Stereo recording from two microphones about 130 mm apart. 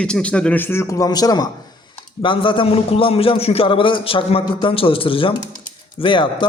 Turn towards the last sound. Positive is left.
turn(degrees=40)  # may be behind; listen again after turning